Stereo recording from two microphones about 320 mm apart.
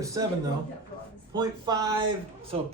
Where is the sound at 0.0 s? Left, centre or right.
Centre.